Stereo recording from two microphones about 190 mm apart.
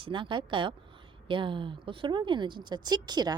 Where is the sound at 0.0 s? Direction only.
25° right (ahead or behind).